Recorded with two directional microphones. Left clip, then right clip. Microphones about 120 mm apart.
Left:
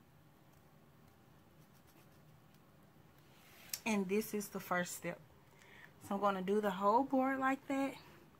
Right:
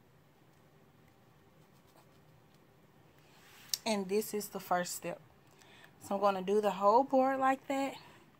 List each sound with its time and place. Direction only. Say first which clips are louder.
3.7 s speech: right 4 dB; 30° right (ahead or behind); by 8.1 s 55° right (ahead or behind)